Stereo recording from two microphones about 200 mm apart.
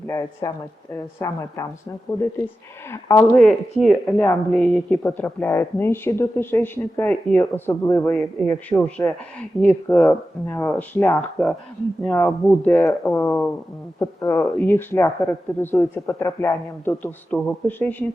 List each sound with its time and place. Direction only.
0.1 s speech: 15° left (ahead or behind)
2.9 s speech: 15° left (ahead or behind)